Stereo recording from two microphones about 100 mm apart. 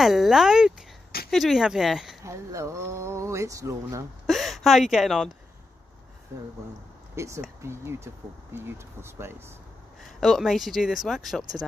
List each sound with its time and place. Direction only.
0.0 s speech: 5° right (ahead or behind)
2.2 s speech: 30° right (ahead or behind)
4.3 s speech: centre (ahead or behind)
7.2 s speech: 30° right (ahead or behind)
10.2 s speech: centre (ahead or behind)